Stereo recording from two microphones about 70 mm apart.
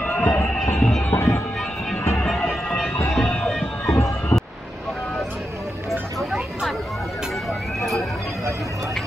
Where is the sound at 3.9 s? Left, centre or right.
Left.